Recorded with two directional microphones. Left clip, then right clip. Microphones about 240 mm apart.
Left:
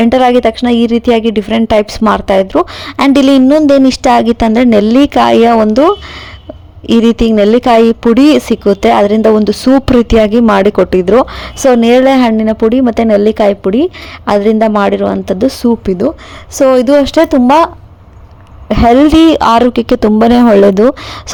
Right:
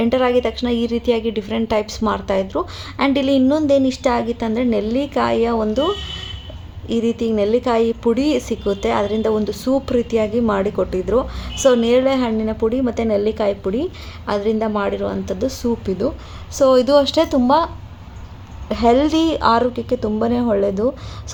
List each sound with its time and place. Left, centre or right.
0.0 s a woman's voice: left
18.7 s a woman's voice: left